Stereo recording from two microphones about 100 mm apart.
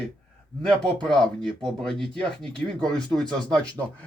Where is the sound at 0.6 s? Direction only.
5° left (ahead or behind).